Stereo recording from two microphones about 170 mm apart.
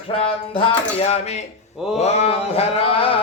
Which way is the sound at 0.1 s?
30° left (ahead or behind).